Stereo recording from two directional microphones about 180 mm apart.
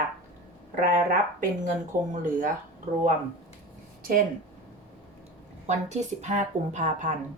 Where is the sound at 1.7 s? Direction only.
45° right (ahead or behind).